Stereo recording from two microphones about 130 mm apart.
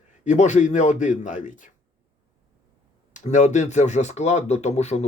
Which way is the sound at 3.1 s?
65° left (ahead or behind).